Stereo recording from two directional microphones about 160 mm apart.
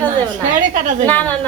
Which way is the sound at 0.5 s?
55° right (ahead or behind).